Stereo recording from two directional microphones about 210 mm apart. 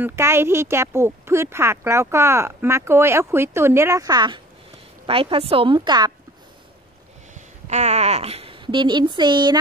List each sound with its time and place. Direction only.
0.0 s a woman's voice: 10° right (ahead or behind)
7.3 s speech: 35° right (ahead or behind)